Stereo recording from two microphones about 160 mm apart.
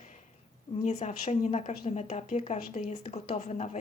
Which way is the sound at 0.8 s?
45° left (ahead or behind).